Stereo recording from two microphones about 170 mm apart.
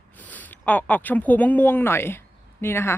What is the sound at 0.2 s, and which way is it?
Speech, 10° left (ahead or behind).